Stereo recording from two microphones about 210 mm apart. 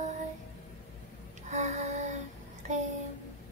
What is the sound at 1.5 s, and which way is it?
Child singing, 35° right (ahead or behind).